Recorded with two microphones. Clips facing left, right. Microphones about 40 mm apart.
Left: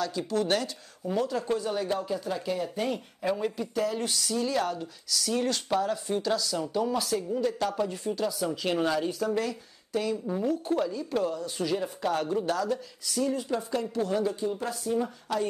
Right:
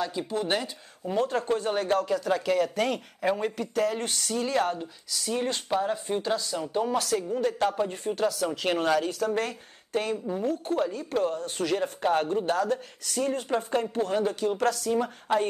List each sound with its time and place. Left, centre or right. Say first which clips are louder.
0.0 s speech: left 1 dB; right
1.1 s speech: right 2 dB; right
2.0 s speech: right 5 dB; right
3.2 s speech: right 2 dB; right
5.1 s speech: left 1 dB; right
7.0 s speech: right 2 dB; right
7.3 s speech: right 1 dB; right
7.6 s speech: right 3 dB; right
7.9 s speech: right 3 dB; right
12.0 s speech: right 4 dB; right
14.4 s speech: right 5 dB; right
15.3 s speech: right 5 dB; right